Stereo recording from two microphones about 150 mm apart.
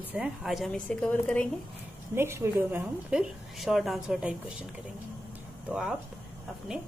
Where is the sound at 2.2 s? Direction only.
15° right (ahead or behind).